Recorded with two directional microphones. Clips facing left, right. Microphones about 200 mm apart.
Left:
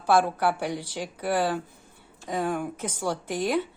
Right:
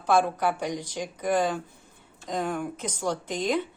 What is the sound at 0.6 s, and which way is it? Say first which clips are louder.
Speech: even; 15° right (ahead or behind).